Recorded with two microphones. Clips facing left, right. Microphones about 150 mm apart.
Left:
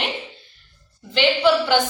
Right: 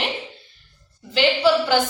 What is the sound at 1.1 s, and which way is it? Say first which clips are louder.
Speech: even; 5° right (ahead or behind).